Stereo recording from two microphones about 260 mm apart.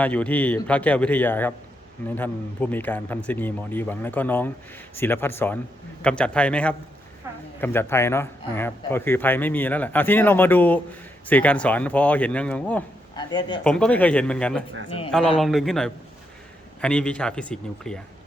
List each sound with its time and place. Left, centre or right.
0.0 s a man's voice: centre
13.1 s speech: centre
13.7 s a man's voice: centre
14.8 s a man's voice: left
15.4 s a man's voice: centre